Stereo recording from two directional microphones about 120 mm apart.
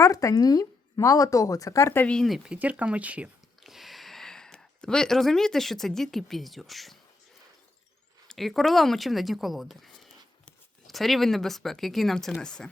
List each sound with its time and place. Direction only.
0.0 s speech: 30° left (ahead or behind)
2.0 s speech: 5° left (ahead or behind)
8.3 s speech: centre (ahead or behind)